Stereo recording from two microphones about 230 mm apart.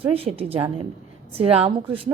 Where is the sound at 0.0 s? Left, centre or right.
Right.